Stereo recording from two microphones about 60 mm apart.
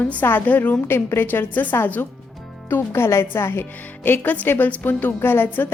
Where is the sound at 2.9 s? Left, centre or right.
Left.